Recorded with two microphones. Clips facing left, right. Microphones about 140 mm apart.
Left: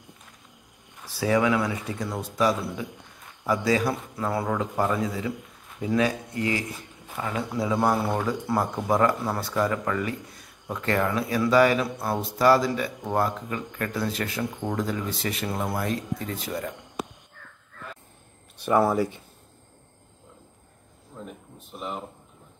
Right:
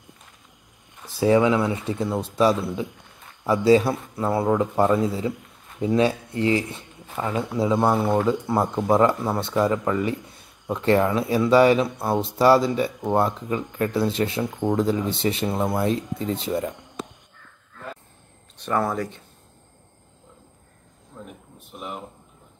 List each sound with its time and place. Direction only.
1.2 s speech: 25° right (ahead or behind)
18.6 s speech: 10° left (ahead or behind)
21.7 s speech: 5° right (ahead or behind)